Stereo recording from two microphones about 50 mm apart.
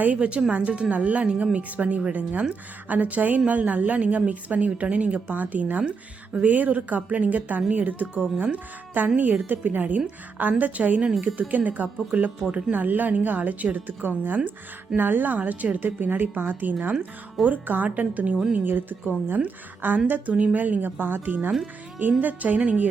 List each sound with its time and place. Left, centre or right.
0.0 s a woman's voice: right
12.7 s a woman's voice: right
18.5 s a woman's voice: right